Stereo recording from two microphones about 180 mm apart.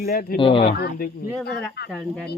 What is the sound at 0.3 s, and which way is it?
Speech, 30° left (ahead or behind).